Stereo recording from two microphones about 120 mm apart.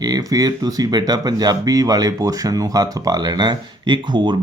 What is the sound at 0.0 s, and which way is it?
Speech, 35° right (ahead or behind).